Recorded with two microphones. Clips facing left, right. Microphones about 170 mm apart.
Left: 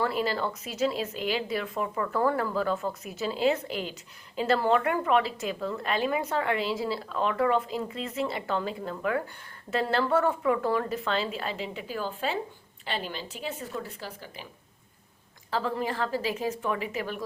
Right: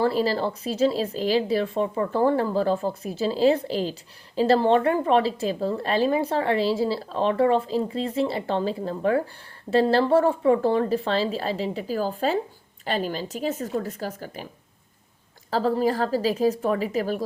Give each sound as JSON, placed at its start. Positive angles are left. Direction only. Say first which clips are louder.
{"t": 0.0, "sound": "a woman's voice", "louder": "right 6 dB", "side_deg": -30}
{"t": 15.4, "sound": "speech", "louder": "right 7 dB", "side_deg": -35}